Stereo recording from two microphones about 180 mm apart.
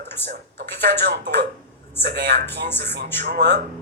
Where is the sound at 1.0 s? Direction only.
75° right (ahead or behind).